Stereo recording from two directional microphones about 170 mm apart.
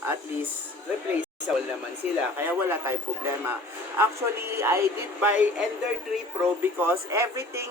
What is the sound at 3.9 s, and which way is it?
Speech, 15° right (ahead or behind).